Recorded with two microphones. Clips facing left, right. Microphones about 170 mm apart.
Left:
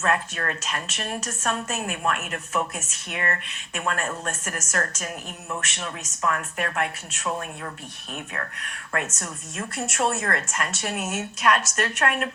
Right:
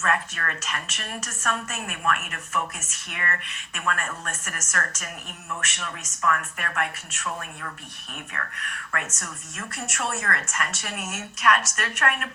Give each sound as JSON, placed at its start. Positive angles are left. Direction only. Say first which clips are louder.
{"t": 0.0, "sound": "a woman's voice", "louder": "left 2 dB", "side_deg": 30}